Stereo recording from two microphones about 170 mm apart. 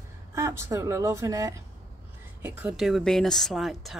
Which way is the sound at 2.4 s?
5° right (ahead or behind).